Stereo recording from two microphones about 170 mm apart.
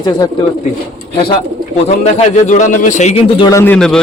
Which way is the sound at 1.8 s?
40° left (ahead or behind).